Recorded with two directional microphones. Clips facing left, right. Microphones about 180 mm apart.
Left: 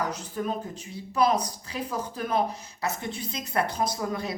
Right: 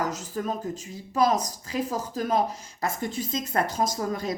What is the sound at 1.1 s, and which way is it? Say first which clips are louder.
A woman's voice: right 1 dB; 45° right (ahead or behind).